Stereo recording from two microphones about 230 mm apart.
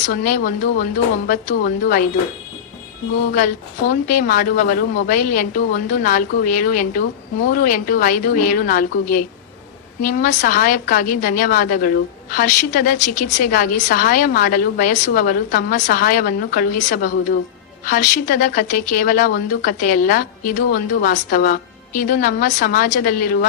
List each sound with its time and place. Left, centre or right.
0.0 s speech: left
3.3 s speech: left